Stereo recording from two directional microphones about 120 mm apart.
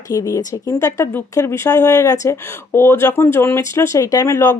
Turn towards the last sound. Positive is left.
turn(degrees=25)  # may be behind; listen again after turning